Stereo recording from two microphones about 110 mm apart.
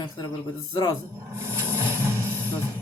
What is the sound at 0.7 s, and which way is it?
Speech, 40° left (ahead or behind).